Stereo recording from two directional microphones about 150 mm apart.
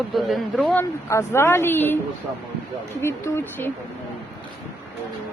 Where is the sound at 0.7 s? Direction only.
20° left (ahead or behind).